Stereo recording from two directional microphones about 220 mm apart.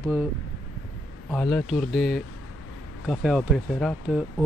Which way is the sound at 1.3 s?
Centre (ahead or behind).